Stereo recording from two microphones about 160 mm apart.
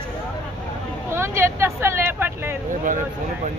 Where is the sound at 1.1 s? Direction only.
15° right (ahead or behind).